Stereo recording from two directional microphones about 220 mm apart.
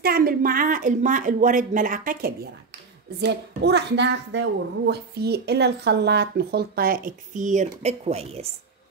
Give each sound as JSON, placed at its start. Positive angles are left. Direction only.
{"t": 0.0, "sound": "speech", "side_deg": -40}
{"t": 3.2, "sound": "speech", "side_deg": -50}